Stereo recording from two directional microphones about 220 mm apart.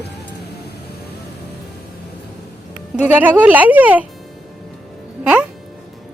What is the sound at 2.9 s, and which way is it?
Speech, 5° right (ahead or behind).